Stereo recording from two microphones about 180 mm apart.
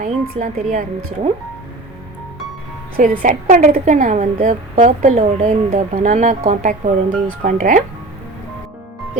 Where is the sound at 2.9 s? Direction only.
50° right (ahead or behind).